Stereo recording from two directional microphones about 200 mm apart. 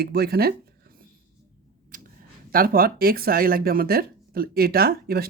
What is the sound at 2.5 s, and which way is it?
Speech, 45° right (ahead or behind).